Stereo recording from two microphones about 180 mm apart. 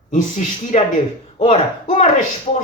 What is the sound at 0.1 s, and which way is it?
Speech, 40° left (ahead or behind).